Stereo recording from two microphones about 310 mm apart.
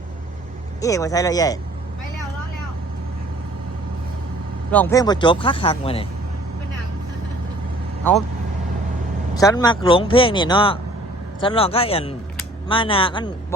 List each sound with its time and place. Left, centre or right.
0.8 s speech: centre
4.7 s speech: centre
9.3 s speech: centre